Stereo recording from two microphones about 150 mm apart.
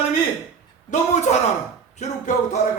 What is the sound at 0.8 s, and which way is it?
A man's voice, 50° left (ahead or behind).